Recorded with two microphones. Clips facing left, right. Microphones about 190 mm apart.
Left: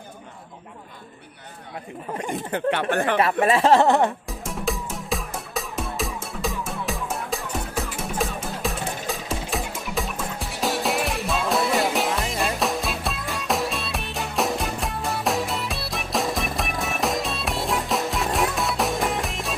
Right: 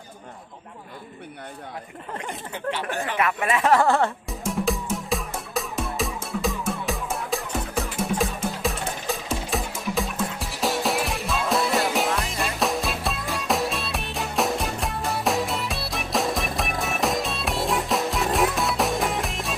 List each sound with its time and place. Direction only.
2.5 s speech: 60° left (ahead or behind)
3.4 s speech: 30° left (ahead or behind)
4.3 s music: centre (ahead or behind)